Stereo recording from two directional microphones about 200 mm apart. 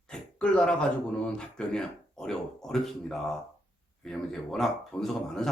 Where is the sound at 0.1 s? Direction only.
5° left (ahead or behind).